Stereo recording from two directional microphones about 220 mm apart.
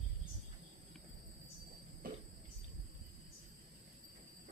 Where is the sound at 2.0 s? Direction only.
40° right (ahead or behind).